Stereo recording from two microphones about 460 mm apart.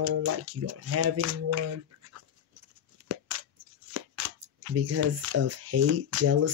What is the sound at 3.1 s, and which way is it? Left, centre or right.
Scissors, right.